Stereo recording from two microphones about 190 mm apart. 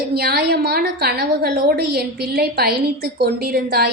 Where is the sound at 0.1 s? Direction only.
55° right (ahead or behind).